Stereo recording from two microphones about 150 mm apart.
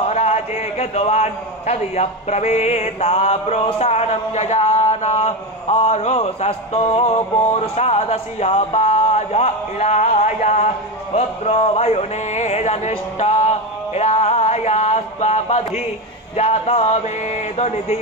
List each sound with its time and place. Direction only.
0.1 s a man's voice: 45° left (ahead or behind)